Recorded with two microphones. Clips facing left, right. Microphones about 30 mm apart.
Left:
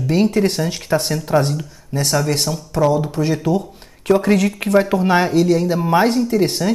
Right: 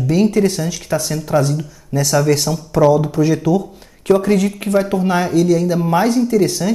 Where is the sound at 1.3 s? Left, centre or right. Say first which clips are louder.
Right 1 dB; centre.